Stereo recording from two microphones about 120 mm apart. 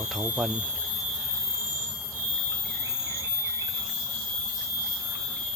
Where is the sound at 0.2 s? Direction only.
15° right (ahead or behind).